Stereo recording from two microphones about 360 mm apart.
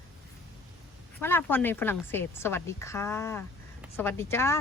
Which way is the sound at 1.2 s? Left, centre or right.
Centre.